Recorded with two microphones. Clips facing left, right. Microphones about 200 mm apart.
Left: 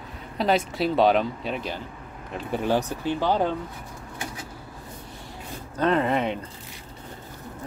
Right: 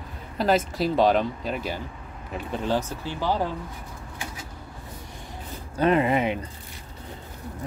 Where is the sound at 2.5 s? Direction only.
15° left (ahead or behind).